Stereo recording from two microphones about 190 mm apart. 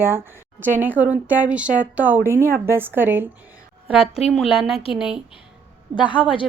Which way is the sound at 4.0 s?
35° left (ahead or behind).